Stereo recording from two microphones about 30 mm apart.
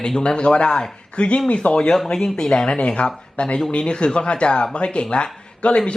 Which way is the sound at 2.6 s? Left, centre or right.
Left.